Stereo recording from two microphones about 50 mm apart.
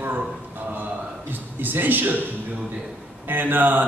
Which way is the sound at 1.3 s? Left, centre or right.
Right.